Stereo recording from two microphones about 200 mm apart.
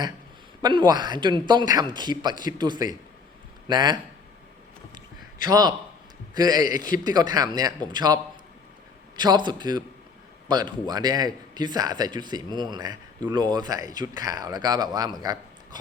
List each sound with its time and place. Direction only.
0.6 s speech: 20° right (ahead or behind)
5.5 s speech: 20° right (ahead or behind)
6.7 s a man's voice: 40° left (ahead or behind)
7.0 s speech: 20° right (ahead or behind)
15.2 s a sound: 20° right (ahead or behind)